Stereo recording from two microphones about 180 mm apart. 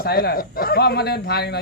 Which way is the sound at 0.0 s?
60° left (ahead or behind).